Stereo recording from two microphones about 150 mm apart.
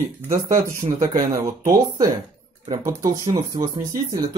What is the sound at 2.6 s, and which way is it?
Speech, 25° right (ahead or behind).